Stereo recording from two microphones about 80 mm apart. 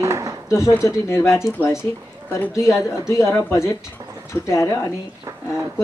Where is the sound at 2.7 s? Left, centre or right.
Centre.